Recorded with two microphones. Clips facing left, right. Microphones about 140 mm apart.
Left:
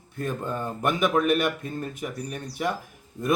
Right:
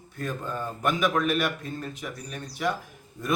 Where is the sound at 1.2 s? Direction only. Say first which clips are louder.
Left 3 dB; 50° left (ahead or behind).